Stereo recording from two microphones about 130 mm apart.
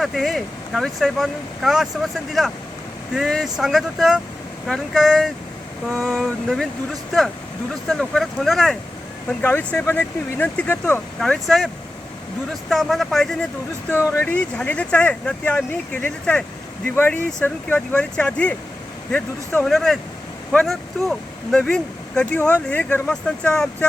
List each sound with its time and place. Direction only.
0.0 s speech: centre (ahead or behind)
9.4 s speech: 15° left (ahead or behind)
11.2 s speech: centre (ahead or behind)
12.7 s speech: centre (ahead or behind)
13.9 s speech: 20° left (ahead or behind)